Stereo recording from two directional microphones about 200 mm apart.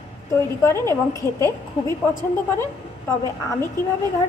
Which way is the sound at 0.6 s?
15° left (ahead or behind).